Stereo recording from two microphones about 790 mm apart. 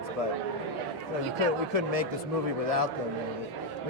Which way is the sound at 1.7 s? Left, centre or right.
Right.